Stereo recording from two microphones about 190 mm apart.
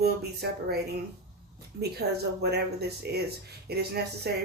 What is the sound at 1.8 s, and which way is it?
Speech, 55° right (ahead or behind).